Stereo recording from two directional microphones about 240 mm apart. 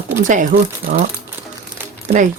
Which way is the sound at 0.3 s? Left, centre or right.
Right.